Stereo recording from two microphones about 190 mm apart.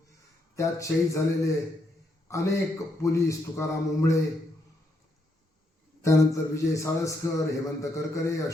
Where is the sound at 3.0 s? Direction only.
15° left (ahead or behind).